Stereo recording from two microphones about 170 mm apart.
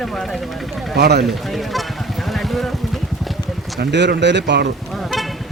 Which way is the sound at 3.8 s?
90° right.